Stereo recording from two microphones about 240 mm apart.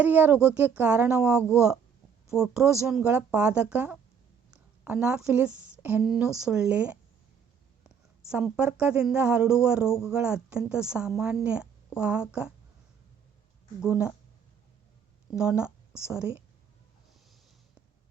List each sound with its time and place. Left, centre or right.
0.0 s speech: centre
4.5 s a sound: centre
5.8 s speech: centre
13.8 s speech: centre
15.3 s a woman's voice: centre